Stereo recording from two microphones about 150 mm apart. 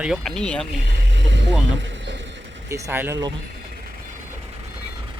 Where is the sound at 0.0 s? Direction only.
Centre (ahead or behind).